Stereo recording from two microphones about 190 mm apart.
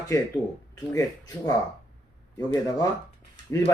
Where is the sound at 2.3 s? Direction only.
20° left (ahead or behind).